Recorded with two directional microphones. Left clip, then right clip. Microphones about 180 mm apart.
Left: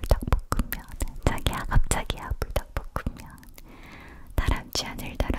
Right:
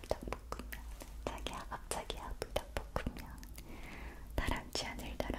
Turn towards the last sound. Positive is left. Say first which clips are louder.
# left 9 dB
turn(degrees=30)  # may be behind; listen again after turning